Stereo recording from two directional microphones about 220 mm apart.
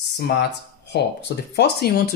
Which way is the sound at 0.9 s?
50° left (ahead or behind).